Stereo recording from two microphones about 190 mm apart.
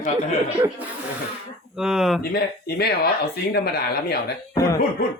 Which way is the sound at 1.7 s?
Centre (ahead or behind).